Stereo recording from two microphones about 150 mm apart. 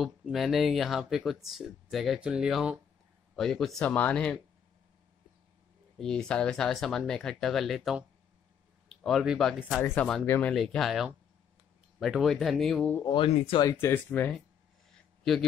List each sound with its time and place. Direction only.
0.0 s speech: centre (ahead or behind)
5.9 s speech: 5° left (ahead or behind)
10.2 s speech: 15° left (ahead or behind)
10.5 s speech: centre (ahead or behind)
13.0 s speech: 35° left (ahead or behind)
13.7 s speech: 15° left (ahead or behind)
15.0 s a sound: centre (ahead or behind)